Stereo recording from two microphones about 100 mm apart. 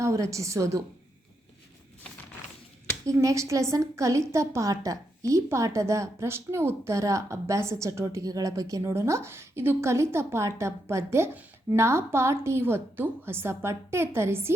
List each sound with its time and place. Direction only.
0.0 s a woman's voice: 30° right (ahead or behind)
3.1 s a woman's voice: 30° right (ahead or behind)